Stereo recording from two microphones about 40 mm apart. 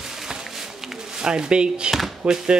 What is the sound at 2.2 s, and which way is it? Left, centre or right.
Speech, centre.